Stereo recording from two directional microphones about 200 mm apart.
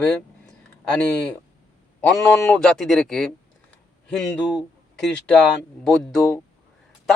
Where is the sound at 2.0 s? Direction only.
5° left (ahead or behind).